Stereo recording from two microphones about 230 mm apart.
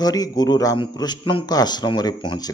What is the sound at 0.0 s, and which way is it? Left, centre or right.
A man's voice, centre.